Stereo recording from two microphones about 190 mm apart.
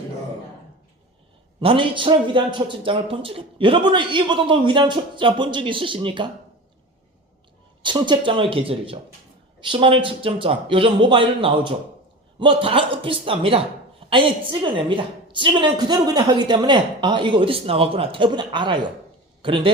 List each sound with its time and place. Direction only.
1.6 s a woman's voice: 25° right (ahead or behind)
7.8 s a woman's voice: 25° right (ahead or behind)